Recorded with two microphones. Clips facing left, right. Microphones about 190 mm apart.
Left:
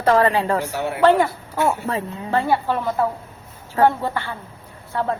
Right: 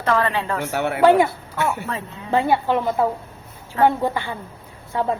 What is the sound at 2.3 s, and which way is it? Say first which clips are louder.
Speech: right 2 dB; 15° right (ahead or behind).